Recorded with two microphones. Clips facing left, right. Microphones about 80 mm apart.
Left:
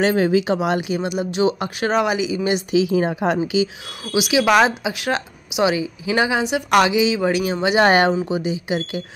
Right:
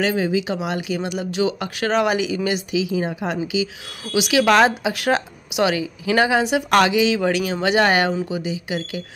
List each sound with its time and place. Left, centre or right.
0.0 s speech: left
0.7 s speech: left
1.0 s speech: centre
1.3 s speech: left
1.9 s speech: centre
2.4 s speech: left
3.6 s speech: left
4.2 s speech: centre
5.6 s speech: centre
7.8 s speech: left